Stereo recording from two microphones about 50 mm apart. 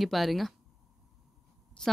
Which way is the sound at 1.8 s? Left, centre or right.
Centre.